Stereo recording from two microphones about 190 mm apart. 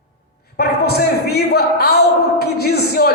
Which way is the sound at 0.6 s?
55° left (ahead or behind).